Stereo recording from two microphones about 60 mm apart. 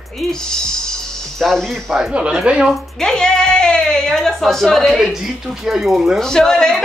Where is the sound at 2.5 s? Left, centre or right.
Centre.